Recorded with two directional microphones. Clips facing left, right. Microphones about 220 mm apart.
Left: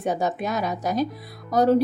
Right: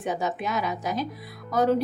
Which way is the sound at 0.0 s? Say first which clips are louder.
Left 3 dB; 40° left (ahead or behind).